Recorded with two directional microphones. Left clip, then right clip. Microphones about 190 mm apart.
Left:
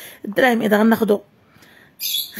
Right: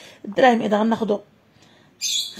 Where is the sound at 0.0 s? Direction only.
30° left (ahead or behind).